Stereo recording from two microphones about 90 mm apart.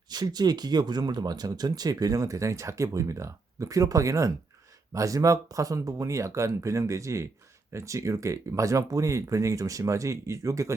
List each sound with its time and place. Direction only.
0.1 s speech: 50° right (ahead or behind)